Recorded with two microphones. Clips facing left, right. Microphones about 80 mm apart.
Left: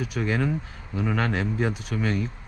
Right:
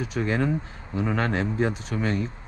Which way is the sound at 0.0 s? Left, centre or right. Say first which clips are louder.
Right 1 dB; right.